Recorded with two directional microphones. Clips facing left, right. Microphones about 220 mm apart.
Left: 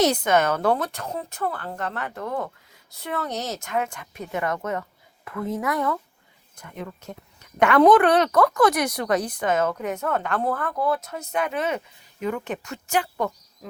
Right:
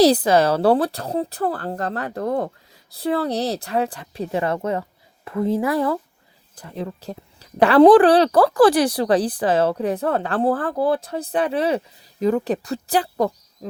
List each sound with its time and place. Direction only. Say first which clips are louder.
0.0 s a woman's voice: right 5 dB; 35° right (ahead or behind)